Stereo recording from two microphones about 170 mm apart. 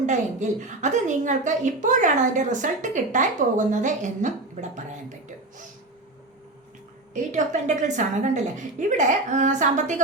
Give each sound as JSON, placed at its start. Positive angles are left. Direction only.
{"t": 0.0, "sound": "a woman's voice", "side_deg": -45}
{"t": 7.1, "sound": "a woman's voice", "side_deg": -45}